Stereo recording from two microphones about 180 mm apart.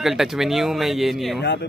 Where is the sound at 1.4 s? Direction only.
70° left (ahead or behind).